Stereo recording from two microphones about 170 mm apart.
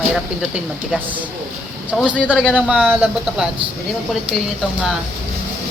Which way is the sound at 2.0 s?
5° right (ahead or behind).